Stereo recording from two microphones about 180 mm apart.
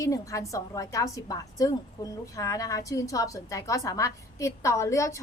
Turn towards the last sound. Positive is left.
turn(degrees=15)  # may be behind; listen again after turning